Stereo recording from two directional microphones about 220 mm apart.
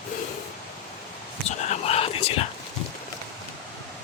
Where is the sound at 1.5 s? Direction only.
30° left (ahead or behind).